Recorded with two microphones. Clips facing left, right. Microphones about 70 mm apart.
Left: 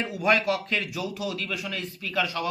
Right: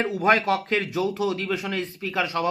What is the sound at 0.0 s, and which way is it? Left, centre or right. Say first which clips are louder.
Speech: right 3 dB; right.